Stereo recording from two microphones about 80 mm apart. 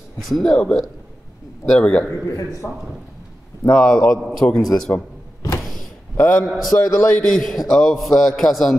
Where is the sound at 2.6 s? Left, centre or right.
Left.